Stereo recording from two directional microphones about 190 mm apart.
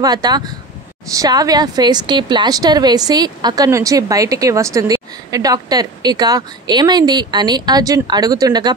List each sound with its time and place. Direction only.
0.0 s a woman's voice: 20° right (ahead or behind)